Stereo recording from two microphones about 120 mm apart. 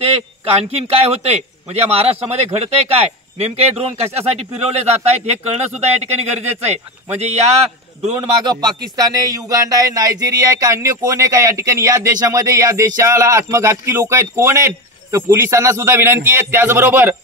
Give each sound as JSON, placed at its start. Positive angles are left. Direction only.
{"t": 0.0, "sound": "a man's voice", "side_deg": -55}
{"t": 8.5, "sound": "speech", "side_deg": -35}